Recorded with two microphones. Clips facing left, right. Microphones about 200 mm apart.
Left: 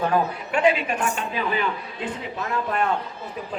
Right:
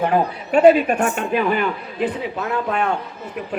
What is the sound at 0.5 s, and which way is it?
Speech, 45° right (ahead or behind).